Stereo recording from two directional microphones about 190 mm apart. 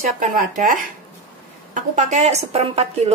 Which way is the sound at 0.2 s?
45° right (ahead or behind).